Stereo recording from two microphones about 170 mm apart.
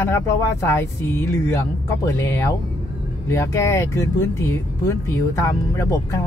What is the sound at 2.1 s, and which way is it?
Speech, 15° left (ahead or behind).